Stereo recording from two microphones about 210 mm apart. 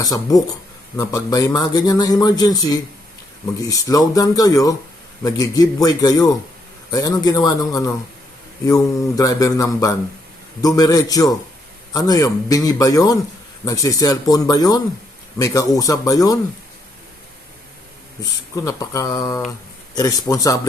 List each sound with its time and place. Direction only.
0.0 s a man's voice: 15° left (ahead or behind)
18.5 s a man's voice: 15° left (ahead or behind)